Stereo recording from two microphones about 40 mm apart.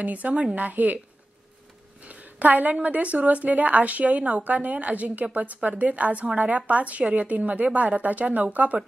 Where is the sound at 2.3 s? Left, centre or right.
Right.